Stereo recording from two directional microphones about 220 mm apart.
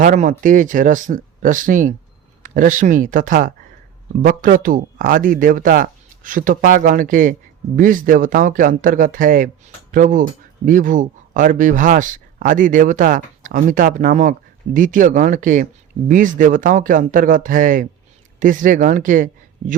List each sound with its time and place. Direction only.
0.0 s speech: 35° right (ahead or behind)